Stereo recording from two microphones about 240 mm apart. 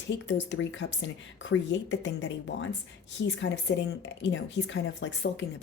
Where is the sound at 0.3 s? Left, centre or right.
Left.